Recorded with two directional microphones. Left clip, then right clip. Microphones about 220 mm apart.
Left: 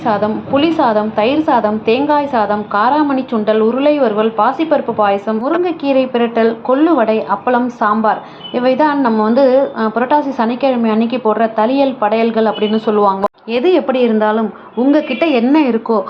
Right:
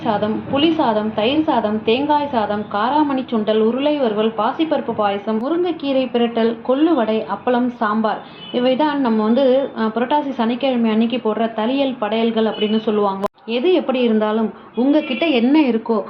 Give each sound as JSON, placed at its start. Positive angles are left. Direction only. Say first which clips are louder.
{"t": 0.0, "sound": "a woman's voice", "louder": "left 5 dB", "side_deg": 15}